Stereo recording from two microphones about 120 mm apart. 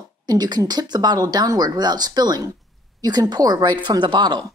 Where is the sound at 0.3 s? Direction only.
35° right (ahead or behind).